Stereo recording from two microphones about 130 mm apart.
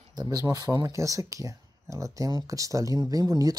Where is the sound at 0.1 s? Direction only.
30° right (ahead or behind).